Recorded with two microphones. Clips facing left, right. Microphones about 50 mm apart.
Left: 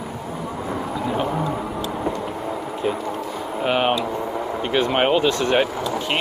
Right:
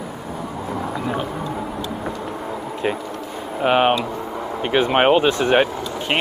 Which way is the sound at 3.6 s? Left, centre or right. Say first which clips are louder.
Right 4 dB; centre.